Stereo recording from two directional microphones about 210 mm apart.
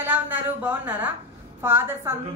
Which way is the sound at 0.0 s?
10° right (ahead or behind).